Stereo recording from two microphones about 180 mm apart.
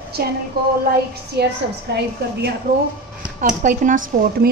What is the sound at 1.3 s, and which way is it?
Speech, 65° right (ahead or behind).